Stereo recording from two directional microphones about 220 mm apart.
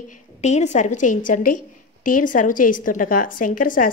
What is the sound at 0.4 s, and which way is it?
A woman's voice, 30° left (ahead or behind).